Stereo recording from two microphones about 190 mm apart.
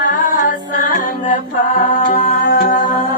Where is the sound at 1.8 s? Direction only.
45° left (ahead or behind).